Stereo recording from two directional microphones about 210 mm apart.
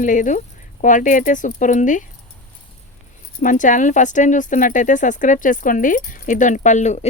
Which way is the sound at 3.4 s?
40° left (ahead or behind).